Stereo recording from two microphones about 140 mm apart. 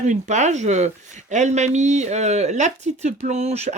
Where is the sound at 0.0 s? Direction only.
60° right (ahead or behind).